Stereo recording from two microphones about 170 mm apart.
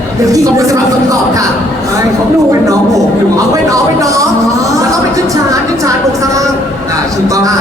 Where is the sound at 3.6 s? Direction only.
20° right (ahead or behind).